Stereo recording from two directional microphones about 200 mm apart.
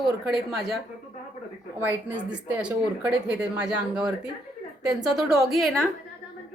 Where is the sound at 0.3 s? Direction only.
Centre (ahead or behind).